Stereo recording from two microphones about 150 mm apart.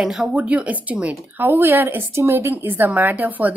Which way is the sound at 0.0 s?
Centre (ahead or behind).